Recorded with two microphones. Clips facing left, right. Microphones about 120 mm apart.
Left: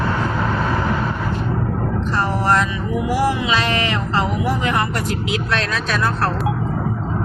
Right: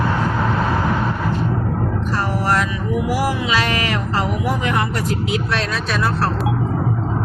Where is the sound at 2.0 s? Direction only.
5° right (ahead or behind).